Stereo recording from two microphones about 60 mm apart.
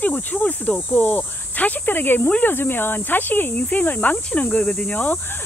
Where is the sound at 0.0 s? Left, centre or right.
Left.